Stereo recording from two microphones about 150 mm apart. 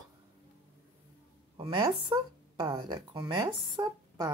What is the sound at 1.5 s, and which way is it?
Speech, 35° right (ahead or behind).